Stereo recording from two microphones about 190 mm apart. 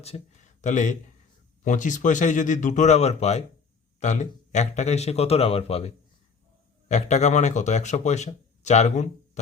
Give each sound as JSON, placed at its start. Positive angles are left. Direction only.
{"t": 0.1, "sound": "speech", "side_deg": 30}